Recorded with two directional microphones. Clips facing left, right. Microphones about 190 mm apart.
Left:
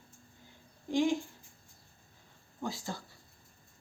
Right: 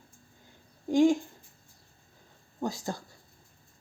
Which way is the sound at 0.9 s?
45° right (ahead or behind).